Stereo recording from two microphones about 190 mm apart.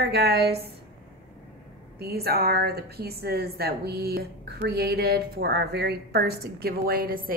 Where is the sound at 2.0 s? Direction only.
55° right (ahead or behind).